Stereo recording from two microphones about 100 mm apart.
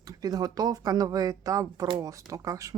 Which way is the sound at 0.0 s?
40° right (ahead or behind).